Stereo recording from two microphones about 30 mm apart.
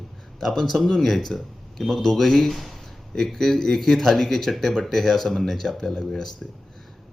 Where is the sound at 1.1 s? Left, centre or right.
Centre.